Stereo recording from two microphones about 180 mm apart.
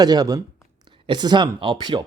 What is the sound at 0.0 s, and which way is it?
Speech, 20° right (ahead or behind).